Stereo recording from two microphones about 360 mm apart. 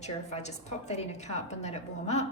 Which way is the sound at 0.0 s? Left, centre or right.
Centre.